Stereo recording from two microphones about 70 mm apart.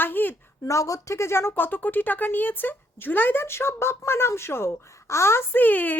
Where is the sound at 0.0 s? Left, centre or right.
Left.